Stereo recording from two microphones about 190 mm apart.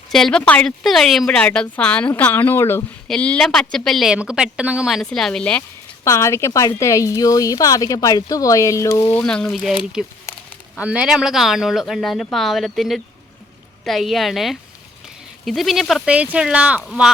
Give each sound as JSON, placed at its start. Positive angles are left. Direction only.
{"t": 0.1, "sound": "a woman's voice", "side_deg": 5}
{"t": 9.1, "sound": "speech", "side_deg": 5}